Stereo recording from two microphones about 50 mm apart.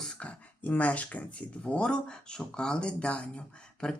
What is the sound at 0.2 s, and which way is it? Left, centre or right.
Speech, left.